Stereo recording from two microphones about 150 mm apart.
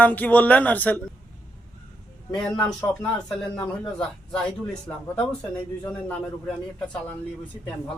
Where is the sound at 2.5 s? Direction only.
30° left (ahead or behind).